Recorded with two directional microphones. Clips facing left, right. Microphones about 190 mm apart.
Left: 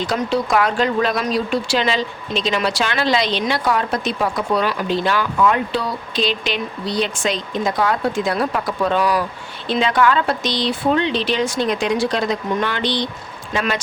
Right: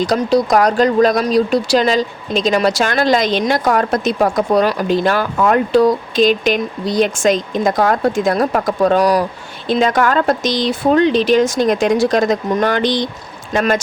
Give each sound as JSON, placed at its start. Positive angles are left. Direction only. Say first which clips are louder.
{"t": 0.0, "sound": "speech", "louder": "right 6 dB", "side_deg": -40}